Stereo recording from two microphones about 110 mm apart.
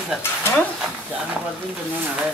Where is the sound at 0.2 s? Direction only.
20° left (ahead or behind).